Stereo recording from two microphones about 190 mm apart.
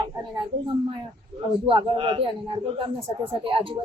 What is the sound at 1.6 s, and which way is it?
Speech, 30° right (ahead or behind).